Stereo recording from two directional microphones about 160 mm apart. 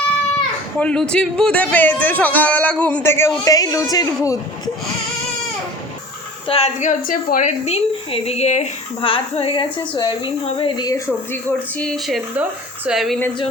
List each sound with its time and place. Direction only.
0.8 s a man's voice: 5° left (ahead or behind); by 4.7 s 20° left (ahead or behind)
6.5 s a woman's voice: 45° left (ahead or behind); by 11.0 s 25° left (ahead or behind)
11.8 s speech: centre (ahead or behind)